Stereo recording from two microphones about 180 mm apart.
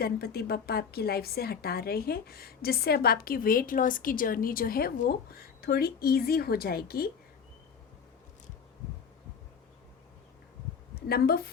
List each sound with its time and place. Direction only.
0.0 s a woman's voice: 60° left (ahead or behind)
10.9 s a woman's voice: 60° left (ahead or behind)